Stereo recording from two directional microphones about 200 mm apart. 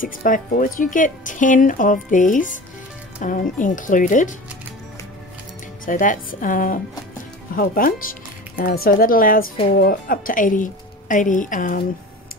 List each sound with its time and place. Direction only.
0.0 s speech: 45° left (ahead or behind)
5.9 s a woman's voice: 40° left (ahead or behind)